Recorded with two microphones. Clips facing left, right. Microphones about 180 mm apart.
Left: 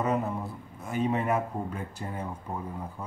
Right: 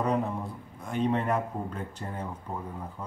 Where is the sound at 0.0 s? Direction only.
5° left (ahead or behind).